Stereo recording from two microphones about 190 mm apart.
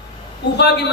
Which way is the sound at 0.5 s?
60° left (ahead or behind).